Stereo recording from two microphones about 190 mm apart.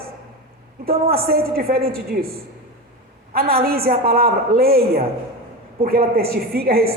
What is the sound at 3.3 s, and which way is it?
A man's voice, 50° right (ahead or behind).